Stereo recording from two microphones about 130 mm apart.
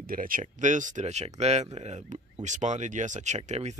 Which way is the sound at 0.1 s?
90° right.